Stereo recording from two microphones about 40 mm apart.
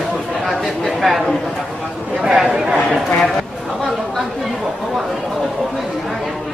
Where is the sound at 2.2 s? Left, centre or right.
Centre.